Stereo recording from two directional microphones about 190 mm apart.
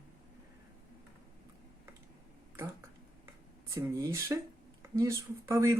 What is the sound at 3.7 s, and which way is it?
Speech, 15° right (ahead or behind).